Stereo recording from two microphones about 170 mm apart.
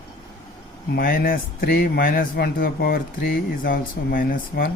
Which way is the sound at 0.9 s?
55° left (ahead or behind).